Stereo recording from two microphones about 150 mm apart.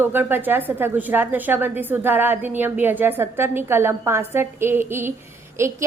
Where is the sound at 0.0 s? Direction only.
15° right (ahead or behind).